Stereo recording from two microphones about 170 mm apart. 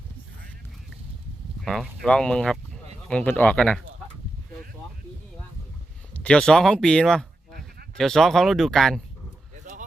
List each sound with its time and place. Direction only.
1.6 s speech: centre (ahead or behind)
6.1 s speech: 5° left (ahead or behind)
9.7 s a sound: 45° right (ahead or behind)